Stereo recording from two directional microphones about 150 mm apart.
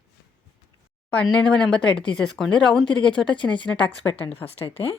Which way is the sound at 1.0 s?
5° left (ahead or behind).